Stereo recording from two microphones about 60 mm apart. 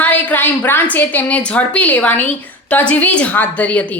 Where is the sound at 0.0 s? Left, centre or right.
Left.